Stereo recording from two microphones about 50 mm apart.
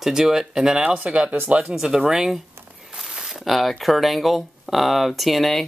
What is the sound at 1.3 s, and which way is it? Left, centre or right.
Speech, right.